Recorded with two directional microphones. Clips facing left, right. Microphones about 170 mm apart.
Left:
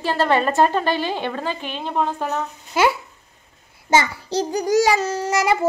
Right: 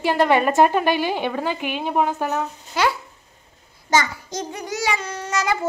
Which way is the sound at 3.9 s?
30° left (ahead or behind).